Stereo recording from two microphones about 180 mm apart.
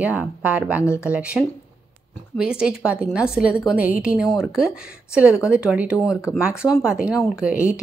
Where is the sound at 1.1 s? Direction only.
5° right (ahead or behind).